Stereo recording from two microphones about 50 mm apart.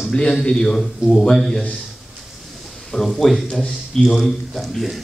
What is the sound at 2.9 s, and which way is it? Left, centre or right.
A man's voice, centre.